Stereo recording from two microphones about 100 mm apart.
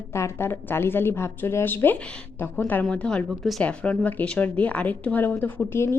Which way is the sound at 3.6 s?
10° left (ahead or behind).